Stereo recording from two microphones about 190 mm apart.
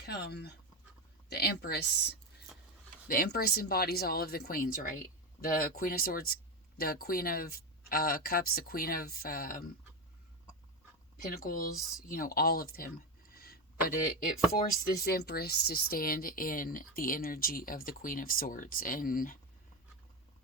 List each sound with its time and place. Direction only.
0.0 s speech: 60° left (ahead or behind)
2.5 s a sound: 5° right (ahead or behind)
3.1 s speech: 50° left (ahead or behind)
11.2 s speech: 50° left (ahead or behind)
13.3 s a sound: 55° left (ahead or behind)
14.5 s speech: 50° left (ahead or behind)